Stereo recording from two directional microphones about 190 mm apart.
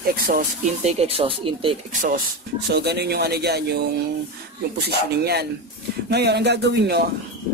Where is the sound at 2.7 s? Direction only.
60° right (ahead or behind).